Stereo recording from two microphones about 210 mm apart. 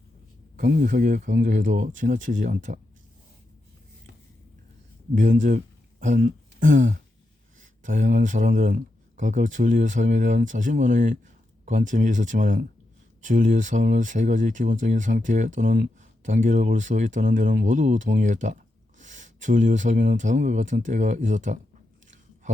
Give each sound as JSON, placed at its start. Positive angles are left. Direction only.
{"t": 0.5, "sound": "speech", "side_deg": -40}
{"t": 5.1, "sound": "speech", "side_deg": -35}